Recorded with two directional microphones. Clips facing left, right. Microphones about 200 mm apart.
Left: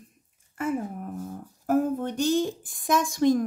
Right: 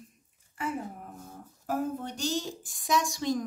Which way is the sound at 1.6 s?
55° left (ahead or behind).